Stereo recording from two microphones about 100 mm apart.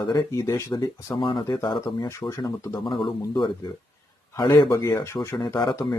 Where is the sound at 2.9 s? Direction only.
50° left (ahead or behind).